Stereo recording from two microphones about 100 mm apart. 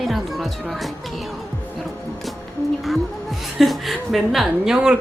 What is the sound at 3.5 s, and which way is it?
Speech, centre (ahead or behind).